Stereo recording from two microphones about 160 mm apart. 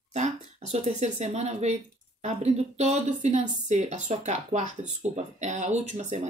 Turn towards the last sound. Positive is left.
turn(degrees=-45)  # may be behind; listen again after turning